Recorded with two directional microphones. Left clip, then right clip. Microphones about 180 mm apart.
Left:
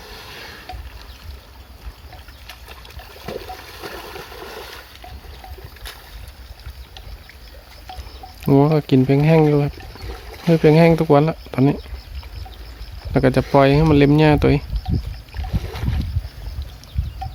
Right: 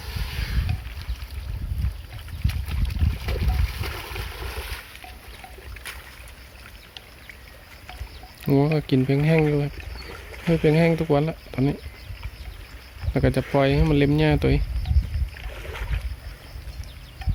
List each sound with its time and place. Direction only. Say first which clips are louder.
0.0 s a sound: even; 5° left (ahead or behind)
3.2 s boat: left 5 dB; centre (ahead or behind)
8.4 s speech: left 6 dB; 10° left (ahead or behind)
10.1 s stream: left 5 dB; 45° left (ahead or behind)
10.5 s speech: left 7 dB; 10° left (ahead or behind)
13.1 s speech: left 7 dB; 10° left (ahead or behind)
14.8 s rowboat: left 8 dB; 25° left (ahead or behind)
15.5 s boat: left 4 dB; 60° left (ahead or behind)